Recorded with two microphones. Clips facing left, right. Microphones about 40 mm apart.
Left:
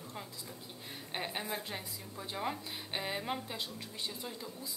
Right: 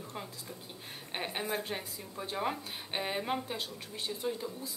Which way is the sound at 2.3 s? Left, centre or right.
Centre.